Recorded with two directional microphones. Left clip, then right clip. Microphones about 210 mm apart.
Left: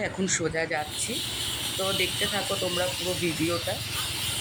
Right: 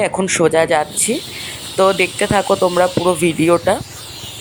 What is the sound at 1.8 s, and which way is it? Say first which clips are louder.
Speech: right 11 dB; 35° right (ahead or behind).